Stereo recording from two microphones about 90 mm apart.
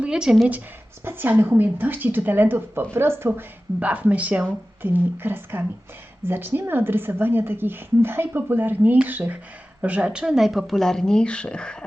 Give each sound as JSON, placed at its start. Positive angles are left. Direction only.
{"t": 0.0, "sound": "a woman's voice", "side_deg": -10}
{"t": 1.0, "sound": "a woman's voice", "side_deg": -20}